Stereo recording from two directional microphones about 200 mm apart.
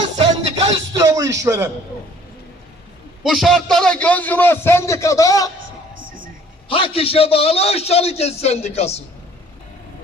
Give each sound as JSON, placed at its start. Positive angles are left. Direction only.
{"t": 0.0, "sound": "a sound", "side_deg": -20}
{"t": 3.2, "sound": "a man's voice", "side_deg": 0}
{"t": 6.7, "sound": "a man's voice", "side_deg": 25}